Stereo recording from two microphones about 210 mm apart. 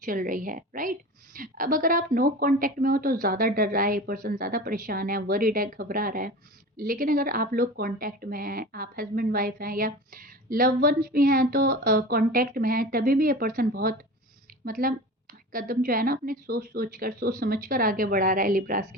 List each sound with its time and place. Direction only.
0.0 s a woman's voice: 40° right (ahead or behind)